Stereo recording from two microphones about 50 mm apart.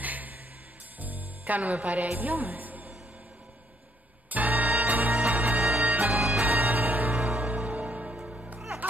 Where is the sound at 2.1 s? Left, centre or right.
Right.